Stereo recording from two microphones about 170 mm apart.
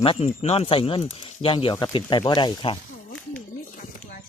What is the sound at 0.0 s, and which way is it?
Speech, 35° left (ahead or behind).